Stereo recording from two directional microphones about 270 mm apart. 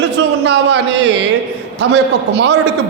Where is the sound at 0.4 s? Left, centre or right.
Right.